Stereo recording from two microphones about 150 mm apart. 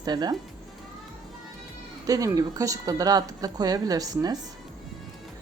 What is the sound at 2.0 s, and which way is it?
A woman's voice, 25° right (ahead or behind).